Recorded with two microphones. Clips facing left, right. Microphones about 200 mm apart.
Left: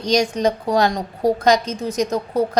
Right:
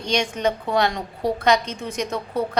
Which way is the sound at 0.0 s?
40° left (ahead or behind).